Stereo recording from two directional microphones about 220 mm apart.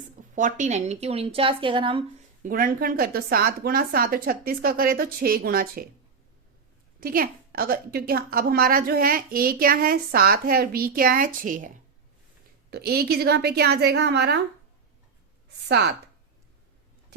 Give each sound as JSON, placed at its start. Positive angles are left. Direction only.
{"t": 0.0, "sound": "a woman's voice", "side_deg": -35}
{"t": 2.4, "sound": "a woman's voice", "side_deg": -40}
{"t": 7.0, "sound": "a woman's voice", "side_deg": -40}
{"t": 12.7, "sound": "a woman's voice", "side_deg": -45}